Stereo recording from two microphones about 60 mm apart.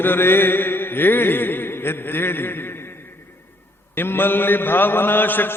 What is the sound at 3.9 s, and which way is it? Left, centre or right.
A man's voice, left.